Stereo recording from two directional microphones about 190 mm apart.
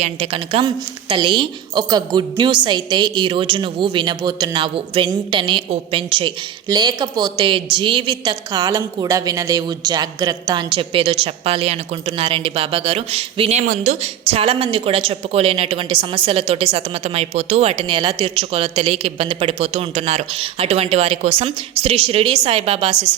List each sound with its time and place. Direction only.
0.0 s a woman's voice: 30° right (ahead or behind)